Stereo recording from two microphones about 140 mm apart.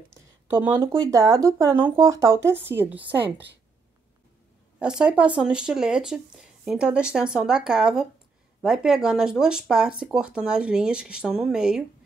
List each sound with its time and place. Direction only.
0.1 s speech: 20° right (ahead or behind)
4.7 s speech: 5° right (ahead or behind)